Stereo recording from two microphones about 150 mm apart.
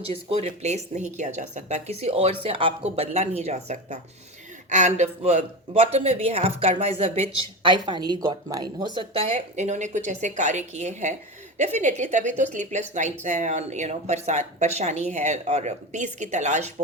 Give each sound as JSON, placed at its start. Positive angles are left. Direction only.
{"t": 0.1, "sound": "a woman's voice", "side_deg": -40}
{"t": 9.6, "sound": "speech", "side_deg": -50}